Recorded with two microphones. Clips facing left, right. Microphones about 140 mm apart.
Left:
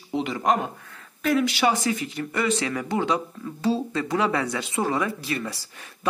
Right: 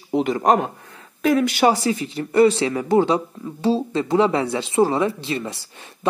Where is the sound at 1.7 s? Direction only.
30° right (ahead or behind).